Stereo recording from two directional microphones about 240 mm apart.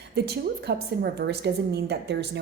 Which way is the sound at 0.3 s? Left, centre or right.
Right.